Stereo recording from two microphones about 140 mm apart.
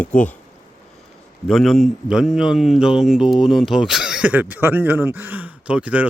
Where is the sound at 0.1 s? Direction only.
5° left (ahead or behind).